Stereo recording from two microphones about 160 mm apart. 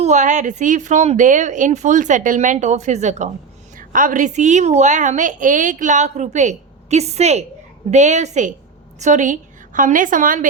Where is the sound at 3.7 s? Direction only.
55° right (ahead or behind).